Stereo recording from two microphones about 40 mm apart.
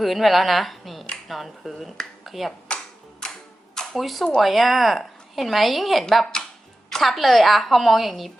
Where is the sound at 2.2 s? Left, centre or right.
Centre.